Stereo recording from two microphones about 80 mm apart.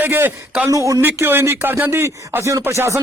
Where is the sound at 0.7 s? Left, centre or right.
Right.